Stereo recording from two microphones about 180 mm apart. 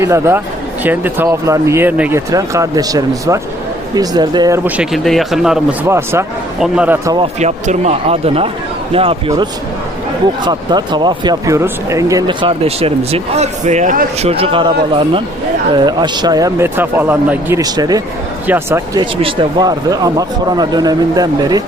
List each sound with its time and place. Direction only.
0.0 s speech: 15° right (ahead or behind)
5.9 s speech: 15° right (ahead or behind)
7.2 s speech: 40° right (ahead or behind)
10.4 s speech: 25° right (ahead or behind); by 14.1 s 45° right (ahead or behind)
14.2 s speech: 35° right (ahead or behind)
18.4 s speech: 10° right (ahead or behind)
18.9 s speech: 25° right (ahead or behind)